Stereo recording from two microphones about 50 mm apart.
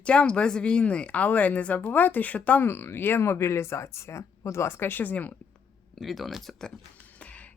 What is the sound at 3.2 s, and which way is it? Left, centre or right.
Speech, left.